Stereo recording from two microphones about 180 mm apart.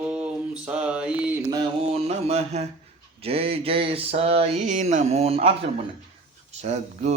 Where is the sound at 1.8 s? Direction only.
35° right (ahead or behind).